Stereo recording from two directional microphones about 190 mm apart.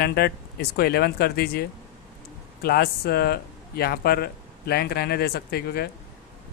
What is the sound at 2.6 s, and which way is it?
Speech, 55° left (ahead or behind).